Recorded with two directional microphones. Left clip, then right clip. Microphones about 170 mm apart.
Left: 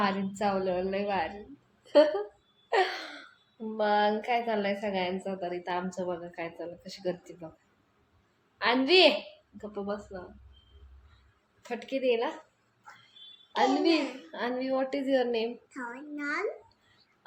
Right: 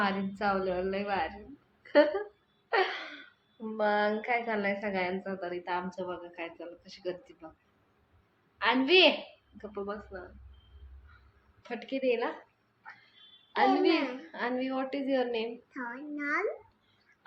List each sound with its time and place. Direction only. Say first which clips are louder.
0.0 s a woman's voice: left 1 dB; 30° left (ahead or behind)
1.8 s a sound: left 2 dB; 25° left (ahead or behind)
3.8 s a woman's voice: left 2 dB; 20° left (ahead or behind); by 7.3 s 35° left (ahead or behind)
8.5 s a child's voice: left 1 dB; 35° left (ahead or behind)
11.7 s a woman's voice: left 2 dB; 25° left (ahead or behind)
13.6 s a child's voice: even; 30° left (ahead or behind)
15.7 s a child's voice: even; 10° left (ahead or behind)